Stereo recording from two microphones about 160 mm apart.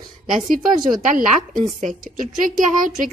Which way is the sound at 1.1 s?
55° right (ahead or behind).